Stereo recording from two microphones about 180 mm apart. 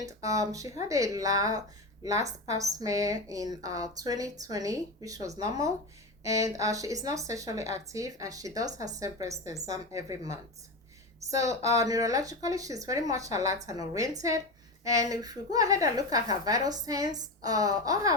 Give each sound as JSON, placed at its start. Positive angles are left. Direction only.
{"t": 0.0, "sound": "a woman's voice", "side_deg": -20}
{"t": 11.3, "sound": "a woman's voice", "side_deg": -15}